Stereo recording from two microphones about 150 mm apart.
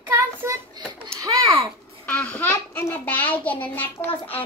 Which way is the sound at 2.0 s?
10° left (ahead or behind).